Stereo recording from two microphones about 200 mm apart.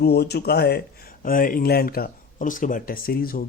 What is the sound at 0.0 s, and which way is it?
Speech, 55° left (ahead or behind).